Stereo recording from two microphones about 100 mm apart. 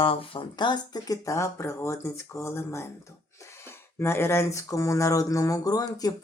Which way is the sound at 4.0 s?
25° left (ahead or behind).